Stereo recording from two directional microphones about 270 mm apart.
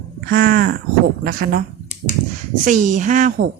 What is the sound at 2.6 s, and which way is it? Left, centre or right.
Speech, right.